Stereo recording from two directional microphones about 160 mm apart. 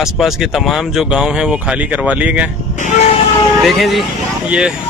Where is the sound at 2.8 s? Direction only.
50° left (ahead or behind).